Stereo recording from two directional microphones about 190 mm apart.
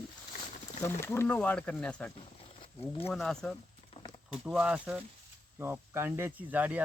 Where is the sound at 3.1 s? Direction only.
Centre (ahead or behind).